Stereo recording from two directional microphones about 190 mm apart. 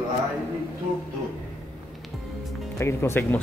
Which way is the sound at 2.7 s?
15° left (ahead or behind).